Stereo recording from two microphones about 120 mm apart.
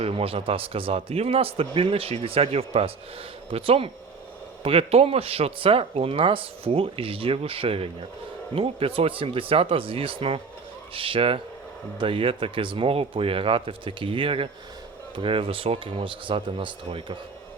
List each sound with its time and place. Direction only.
0.0 s speech: 50° right (ahead or behind)